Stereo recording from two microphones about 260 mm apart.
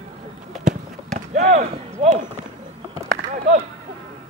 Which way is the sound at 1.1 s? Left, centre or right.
Right.